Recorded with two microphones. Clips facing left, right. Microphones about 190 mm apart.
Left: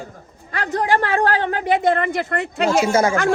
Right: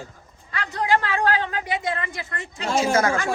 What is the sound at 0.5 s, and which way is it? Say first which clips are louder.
A woman's voice: left 3 dB; 45° left (ahead or behind).